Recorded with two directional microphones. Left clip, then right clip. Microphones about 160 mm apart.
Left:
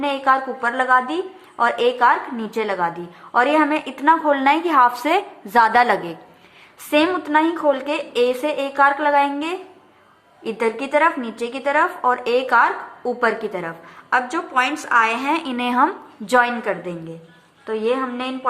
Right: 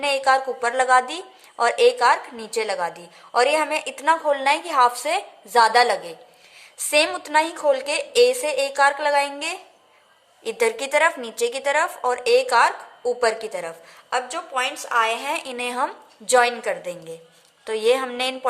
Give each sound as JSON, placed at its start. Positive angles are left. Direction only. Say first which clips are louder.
{"t": 0.0, "sound": "a woman's voice", "louder": "left 1 dB", "side_deg": -40}
{"t": 10.4, "sound": "a woman's voice", "louder": "even", "side_deg": -50}
{"t": 17.7, "sound": "a woman's voice", "louder": "right 1 dB", "side_deg": -60}